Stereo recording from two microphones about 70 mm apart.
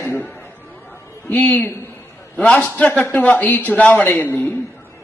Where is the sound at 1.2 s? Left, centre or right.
Left.